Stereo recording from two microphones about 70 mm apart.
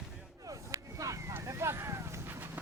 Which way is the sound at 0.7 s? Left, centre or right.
Right.